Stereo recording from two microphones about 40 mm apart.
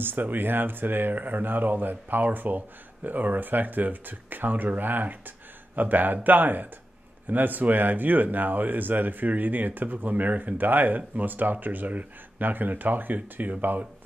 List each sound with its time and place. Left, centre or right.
0.0 s speech: right